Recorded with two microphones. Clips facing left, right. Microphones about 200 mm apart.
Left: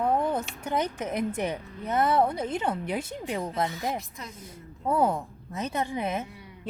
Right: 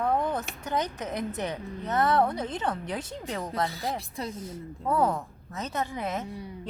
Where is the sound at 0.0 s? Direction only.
10° left (ahead or behind).